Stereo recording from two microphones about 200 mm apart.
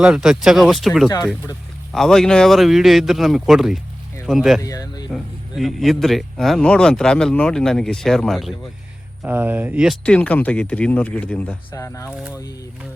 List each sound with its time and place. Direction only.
0.0 s speech: 5° right (ahead or behind)
1.0 s speech: 20° left (ahead or behind)
1.9 s speech: centre (ahead or behind)
4.6 s speech: 15° left (ahead or behind)
5.1 s speech: centre (ahead or behind)